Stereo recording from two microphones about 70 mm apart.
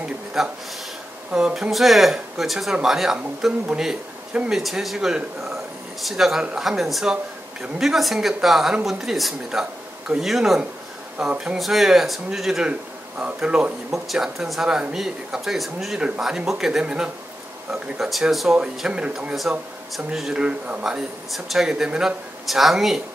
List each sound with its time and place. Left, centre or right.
0.0 s a sound: centre
1.3 s speech: centre
13.9 s speech: centre
20.4 s speech: centre
20.8 s speech: centre